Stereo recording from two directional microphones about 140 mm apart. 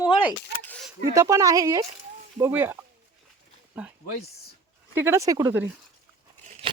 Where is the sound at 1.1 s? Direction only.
20° right (ahead or behind).